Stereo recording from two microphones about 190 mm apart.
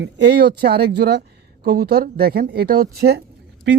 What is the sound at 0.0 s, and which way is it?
Speech, 55° right (ahead or behind).